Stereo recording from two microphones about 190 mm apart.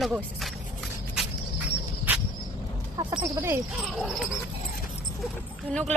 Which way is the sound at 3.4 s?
15° right (ahead or behind).